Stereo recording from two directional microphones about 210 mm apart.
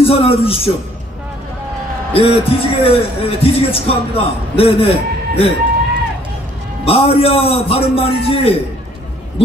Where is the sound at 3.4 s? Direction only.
25° left (ahead or behind).